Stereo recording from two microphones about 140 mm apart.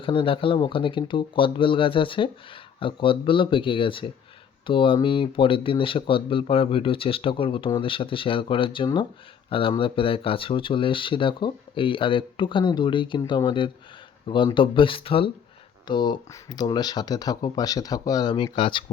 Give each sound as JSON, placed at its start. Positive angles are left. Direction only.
{"t": 0.0, "sound": "speech", "side_deg": 40}